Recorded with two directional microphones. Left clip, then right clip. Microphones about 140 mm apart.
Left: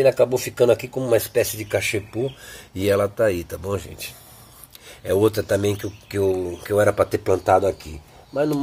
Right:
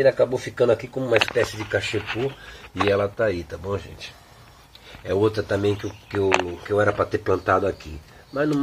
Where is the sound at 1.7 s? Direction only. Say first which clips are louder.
Left 1 dB; 20° left (ahead or behind).